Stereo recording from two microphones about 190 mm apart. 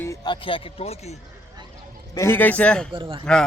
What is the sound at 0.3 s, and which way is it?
Speech, 30° left (ahead or behind).